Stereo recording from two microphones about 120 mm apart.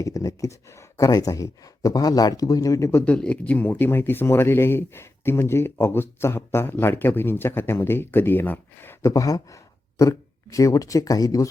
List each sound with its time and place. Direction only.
0.0 s speech: 30° left (ahead or behind)
3.0 s speech: 10° left (ahead or behind); by 11.4 s 30° left (ahead or behind)